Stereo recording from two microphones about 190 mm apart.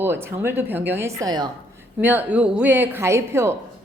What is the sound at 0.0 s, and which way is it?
Speech, 10° right (ahead or behind).